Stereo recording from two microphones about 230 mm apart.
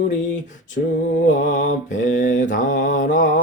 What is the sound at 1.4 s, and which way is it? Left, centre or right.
Mantra, left.